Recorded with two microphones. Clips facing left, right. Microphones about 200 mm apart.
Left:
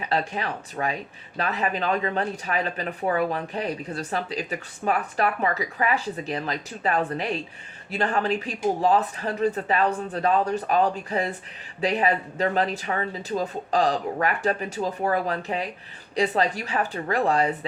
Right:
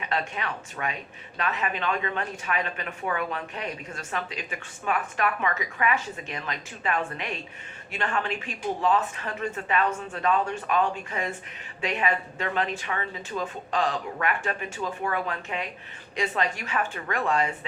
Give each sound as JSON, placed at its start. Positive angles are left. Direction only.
{"t": 0.0, "sound": "speech", "side_deg": 35}